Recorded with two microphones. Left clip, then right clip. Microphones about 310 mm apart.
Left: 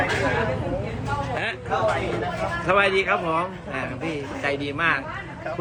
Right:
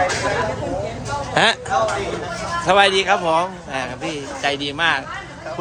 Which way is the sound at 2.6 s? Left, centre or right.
Centre.